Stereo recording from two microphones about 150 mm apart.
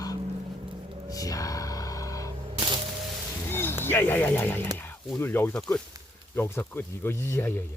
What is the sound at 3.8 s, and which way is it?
Speech, 15° left (ahead or behind).